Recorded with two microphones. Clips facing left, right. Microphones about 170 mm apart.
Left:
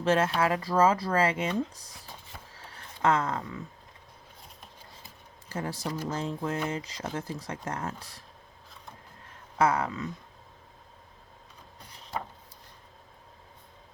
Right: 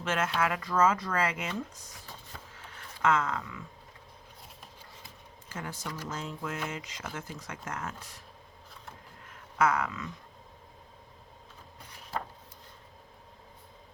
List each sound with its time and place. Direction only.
0.0 s speech: 35° left (ahead or behind)
2.6 s a sound: 35° left (ahead or behind)
5.5 s speech: 35° left (ahead or behind)
9.6 s speech: 30° left (ahead or behind)